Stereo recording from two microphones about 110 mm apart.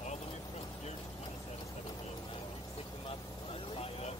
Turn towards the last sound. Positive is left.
turn(degrees=70)  # may be behind; listen again after turning